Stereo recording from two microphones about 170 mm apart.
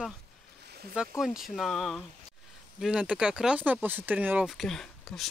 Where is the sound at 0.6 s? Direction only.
70° right (ahead or behind).